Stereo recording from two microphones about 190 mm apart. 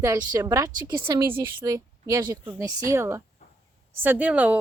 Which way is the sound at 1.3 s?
10° right (ahead or behind).